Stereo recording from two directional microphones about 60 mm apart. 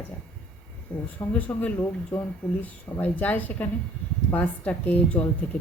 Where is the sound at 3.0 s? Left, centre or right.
Left.